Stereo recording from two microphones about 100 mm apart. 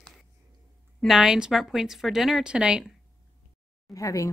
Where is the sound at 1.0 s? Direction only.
5° right (ahead or behind).